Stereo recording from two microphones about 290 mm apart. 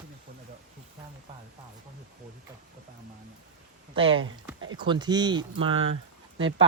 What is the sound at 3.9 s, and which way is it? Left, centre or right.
Speech, centre.